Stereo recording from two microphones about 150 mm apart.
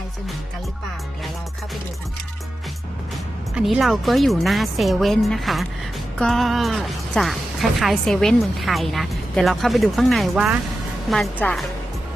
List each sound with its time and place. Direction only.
3.5 s a woman's voice: centre (ahead or behind)
11.1 s a woman's voice: 5° left (ahead or behind)